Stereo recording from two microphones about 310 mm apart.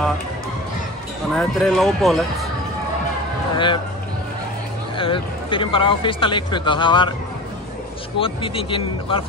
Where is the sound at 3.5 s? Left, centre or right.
Centre.